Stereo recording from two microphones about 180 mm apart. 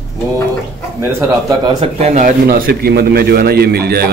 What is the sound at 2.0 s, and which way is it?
Speech, 40° right (ahead or behind).